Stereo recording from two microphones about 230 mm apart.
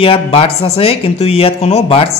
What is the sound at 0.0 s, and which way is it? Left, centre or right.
Speech, left.